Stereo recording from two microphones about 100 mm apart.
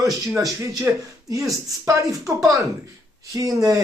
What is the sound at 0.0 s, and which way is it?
Speech, 35° right (ahead or behind).